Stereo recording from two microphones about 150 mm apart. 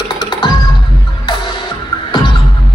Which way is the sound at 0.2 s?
30° left (ahead or behind).